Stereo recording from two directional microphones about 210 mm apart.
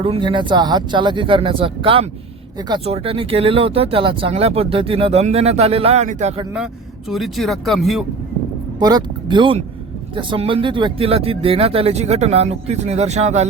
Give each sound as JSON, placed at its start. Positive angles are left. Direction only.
{"t": 0.0, "sound": "speech", "side_deg": -25}
{"t": 7.1, "sound": "speech", "side_deg": 0}
{"t": 8.8, "sound": "speech", "side_deg": -20}